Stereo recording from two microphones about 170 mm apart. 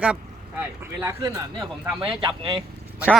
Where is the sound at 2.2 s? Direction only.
30° right (ahead or behind).